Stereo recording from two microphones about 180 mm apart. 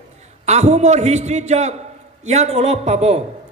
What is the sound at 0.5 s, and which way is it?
A man's voice, 40° right (ahead or behind).